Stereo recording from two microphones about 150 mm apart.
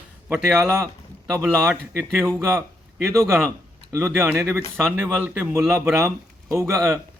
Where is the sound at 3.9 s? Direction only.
15° right (ahead or behind).